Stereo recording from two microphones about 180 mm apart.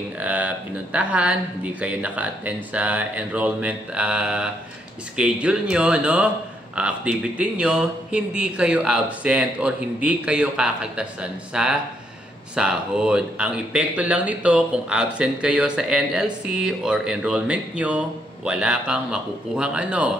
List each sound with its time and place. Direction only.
0.2 s speech: 10° right (ahead or behind)